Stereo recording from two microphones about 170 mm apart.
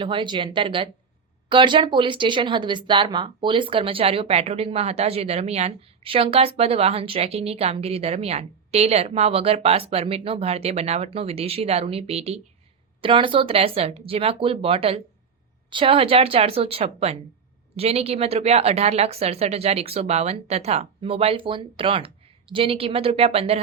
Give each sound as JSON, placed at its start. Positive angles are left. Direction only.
{"t": 0.0, "sound": "speech", "side_deg": -30}